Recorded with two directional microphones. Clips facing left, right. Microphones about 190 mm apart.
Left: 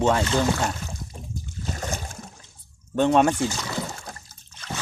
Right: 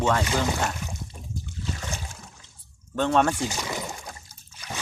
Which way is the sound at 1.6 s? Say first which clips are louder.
Left 4 dB; 45° left (ahead or behind).